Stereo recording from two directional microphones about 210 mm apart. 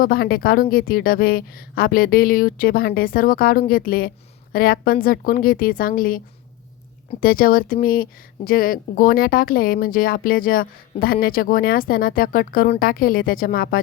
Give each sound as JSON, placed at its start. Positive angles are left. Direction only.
{"t": 0.0, "sound": "speech", "side_deg": 45}